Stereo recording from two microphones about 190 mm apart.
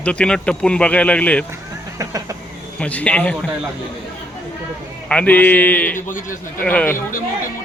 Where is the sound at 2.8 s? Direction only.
5° left (ahead or behind).